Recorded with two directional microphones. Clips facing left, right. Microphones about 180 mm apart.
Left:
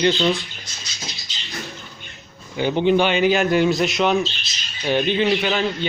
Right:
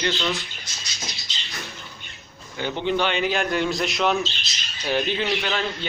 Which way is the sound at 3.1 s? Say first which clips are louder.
Left 6 dB; 5° left (ahead or behind).